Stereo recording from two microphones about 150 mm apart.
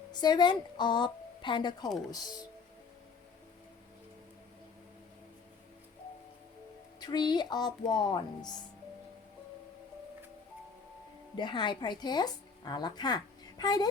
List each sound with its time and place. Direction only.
0.1 s a woman's voice: 30° left (ahead or behind)
7.0 s speech: 30° left (ahead or behind)
11.3 s a woman's voice: 30° left (ahead or behind)